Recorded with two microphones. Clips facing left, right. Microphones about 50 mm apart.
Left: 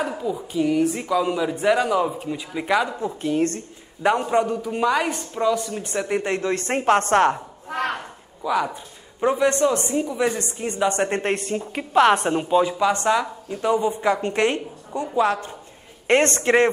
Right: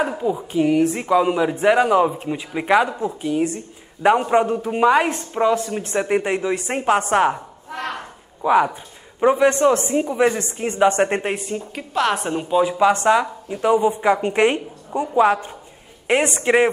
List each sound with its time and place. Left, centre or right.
0.2 s speech: right
3.1 s a woman's voice: centre
7.7 s a sound: centre
8.4 s speech: right
11.2 s a woman's voice: centre
11.5 s a woman's voice: centre
12.7 s a woman's voice: centre
16.1 s a woman's voice: centre